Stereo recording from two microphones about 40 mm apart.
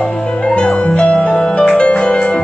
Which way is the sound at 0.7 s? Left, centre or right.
Left.